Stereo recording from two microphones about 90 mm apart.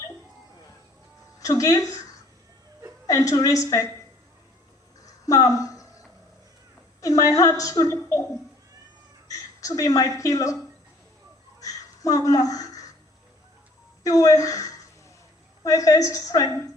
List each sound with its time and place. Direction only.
1.4 s a woman's voice: 40° left (ahead or behind)
3.1 s a woman's voice: 35° left (ahead or behind)
5.2 s speech: 40° left (ahead or behind)
7.0 s a woman's voice: 40° left (ahead or behind)
9.2 s speech: 40° left (ahead or behind)
11.6 s a sound: 40° left (ahead or behind)
14.0 s a woman's voice: 40° left (ahead or behind)